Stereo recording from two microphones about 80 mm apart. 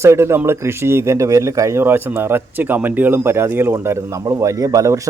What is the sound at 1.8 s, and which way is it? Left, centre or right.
Speech, right.